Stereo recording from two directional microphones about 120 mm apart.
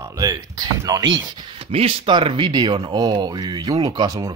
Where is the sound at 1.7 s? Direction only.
55° right (ahead or behind); by 4.3 s 30° right (ahead or behind).